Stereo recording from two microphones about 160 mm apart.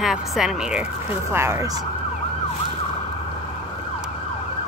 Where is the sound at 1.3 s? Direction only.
15° right (ahead or behind).